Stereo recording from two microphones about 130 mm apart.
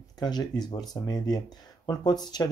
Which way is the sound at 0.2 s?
30° left (ahead or behind).